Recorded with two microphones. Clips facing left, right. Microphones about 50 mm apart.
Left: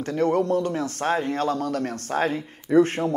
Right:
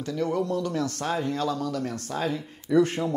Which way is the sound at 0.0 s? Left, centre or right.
Left.